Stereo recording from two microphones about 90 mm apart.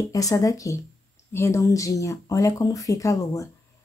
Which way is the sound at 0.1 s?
40° left (ahead or behind).